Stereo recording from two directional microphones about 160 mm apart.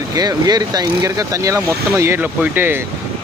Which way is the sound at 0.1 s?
25° right (ahead or behind).